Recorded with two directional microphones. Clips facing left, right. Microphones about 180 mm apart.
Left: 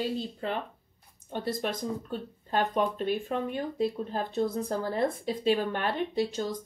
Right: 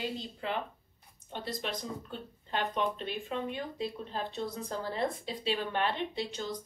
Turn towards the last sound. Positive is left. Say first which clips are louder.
# left 7 dB
turn(degrees=45)  # may be behind; listen again after turning